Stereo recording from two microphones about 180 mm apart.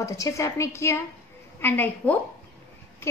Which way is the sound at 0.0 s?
20° left (ahead or behind).